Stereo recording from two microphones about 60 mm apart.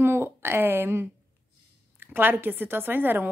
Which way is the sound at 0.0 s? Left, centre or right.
Right.